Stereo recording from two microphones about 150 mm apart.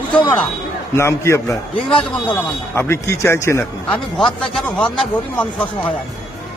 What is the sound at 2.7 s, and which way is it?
Speech, 15° left (ahead or behind).